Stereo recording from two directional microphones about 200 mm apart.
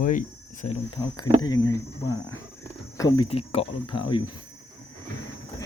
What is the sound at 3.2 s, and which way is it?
Speech, 30° left (ahead or behind).